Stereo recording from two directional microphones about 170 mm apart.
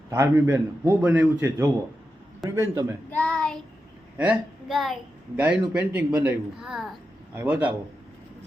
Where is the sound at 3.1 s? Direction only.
5° left (ahead or behind).